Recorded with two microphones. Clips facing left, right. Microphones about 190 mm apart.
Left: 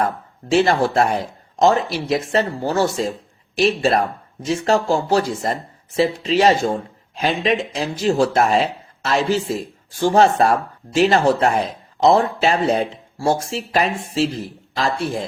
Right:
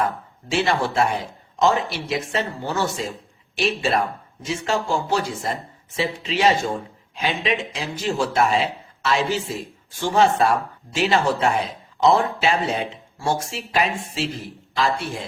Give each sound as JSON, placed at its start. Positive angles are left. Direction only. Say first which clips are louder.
{"t": 0.5, "sound": "a man's voice", "louder": "left 5 dB", "side_deg": 40}